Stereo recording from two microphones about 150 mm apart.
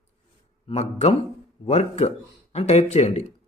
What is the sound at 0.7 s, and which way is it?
Speech, 45° left (ahead or behind).